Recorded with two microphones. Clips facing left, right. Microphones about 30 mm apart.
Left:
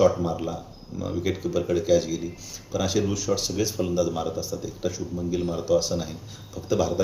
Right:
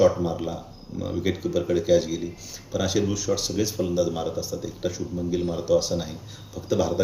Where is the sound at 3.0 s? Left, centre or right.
Centre.